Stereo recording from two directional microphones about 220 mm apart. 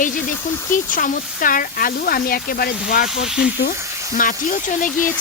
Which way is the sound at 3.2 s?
Centre (ahead or behind).